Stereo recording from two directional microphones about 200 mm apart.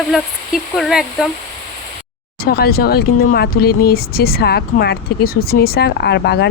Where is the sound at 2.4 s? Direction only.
50° left (ahead or behind).